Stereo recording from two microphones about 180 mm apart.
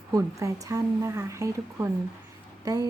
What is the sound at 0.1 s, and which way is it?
Speech, 15° right (ahead or behind).